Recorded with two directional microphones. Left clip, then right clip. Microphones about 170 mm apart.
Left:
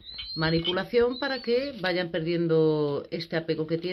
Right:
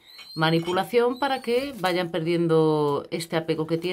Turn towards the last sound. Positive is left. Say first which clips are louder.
# right 3 dB
turn(degrees=-5)  # may be behind; listen again after turning